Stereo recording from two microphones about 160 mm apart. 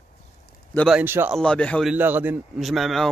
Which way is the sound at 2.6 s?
Centre (ahead or behind).